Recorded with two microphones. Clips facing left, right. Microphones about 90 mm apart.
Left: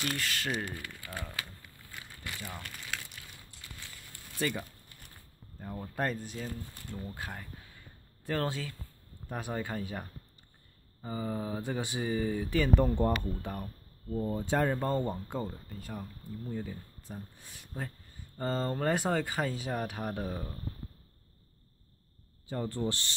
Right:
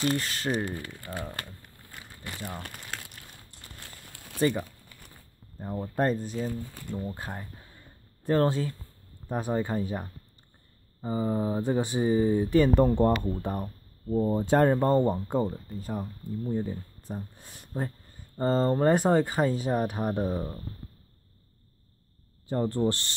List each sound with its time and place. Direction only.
0.0 s speech: 30° right (ahead or behind)
1.3 s speech: 50° right (ahead or behind)
2.2 s crumpling: 30° right (ahead or behind)
4.4 s speech: 30° right (ahead or behind)
12.9 s speech: 65° right (ahead or behind)
13.4 s speech: 40° right (ahead or behind)
14.4 s speech: 55° right (ahead or behind)
14.7 s speech: 35° right (ahead or behind)
17.4 s speech: 45° right (ahead or behind)
18.4 s speech: 35° right (ahead or behind)
22.5 s speech: 40° right (ahead or behind)